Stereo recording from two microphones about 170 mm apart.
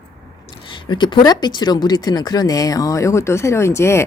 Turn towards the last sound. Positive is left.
turn(degrees=15)  # may be behind; listen again after turning